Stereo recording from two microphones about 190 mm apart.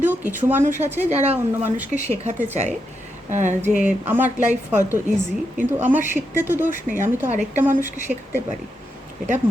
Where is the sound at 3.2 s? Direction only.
40° right (ahead or behind).